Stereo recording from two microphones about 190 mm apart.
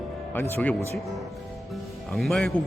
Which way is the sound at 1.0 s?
Centre (ahead or behind).